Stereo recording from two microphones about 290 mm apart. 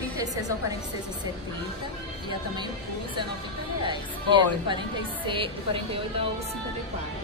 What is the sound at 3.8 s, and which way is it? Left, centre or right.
Speech, centre.